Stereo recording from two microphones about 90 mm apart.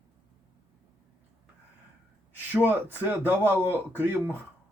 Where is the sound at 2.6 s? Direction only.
20° right (ahead or behind).